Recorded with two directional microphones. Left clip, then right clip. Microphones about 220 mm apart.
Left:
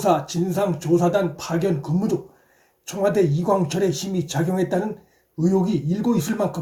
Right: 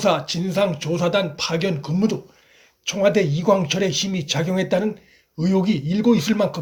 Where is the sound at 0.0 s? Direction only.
25° right (ahead or behind).